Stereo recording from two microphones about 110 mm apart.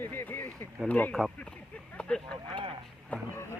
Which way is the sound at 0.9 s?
15° left (ahead or behind).